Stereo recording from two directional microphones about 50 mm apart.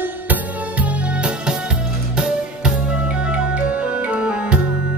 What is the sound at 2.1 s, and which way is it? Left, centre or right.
Music, centre.